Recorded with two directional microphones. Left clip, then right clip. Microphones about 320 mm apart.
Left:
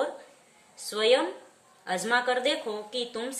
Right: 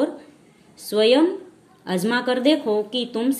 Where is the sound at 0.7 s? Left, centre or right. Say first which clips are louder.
Right 7 dB; centre.